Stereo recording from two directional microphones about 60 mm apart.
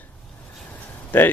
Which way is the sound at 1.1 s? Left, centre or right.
Left.